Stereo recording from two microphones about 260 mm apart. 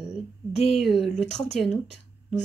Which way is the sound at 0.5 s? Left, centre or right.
Left.